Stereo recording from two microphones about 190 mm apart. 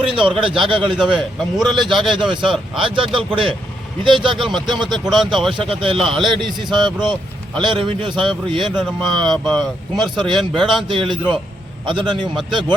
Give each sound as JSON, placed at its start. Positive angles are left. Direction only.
{"t": 0.1, "sound": "a man's voice", "side_deg": -25}
{"t": 0.9, "sound": "speech", "side_deg": -5}
{"t": 2.3, "sound": "a man's voice", "side_deg": -25}
{"t": 5.0, "sound": "speech", "side_deg": 0}
{"t": 5.5, "sound": "a man's voice", "side_deg": -30}
{"t": 6.0, "sound": "speech", "side_deg": 0}
{"t": 6.7, "sound": "a man's voice", "side_deg": -25}
{"t": 8.7, "sound": "speech", "side_deg": 0}
{"t": 10.2, "sound": "a man's voice", "side_deg": -25}
{"t": 10.6, "sound": "speech", "side_deg": 0}
{"t": 10.8, "sound": "a man's voice", "side_deg": -25}
{"t": 12.3, "sound": "speech", "side_deg": 0}